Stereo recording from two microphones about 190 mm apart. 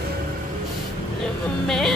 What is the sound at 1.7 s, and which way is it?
Speech, centre (ahead or behind).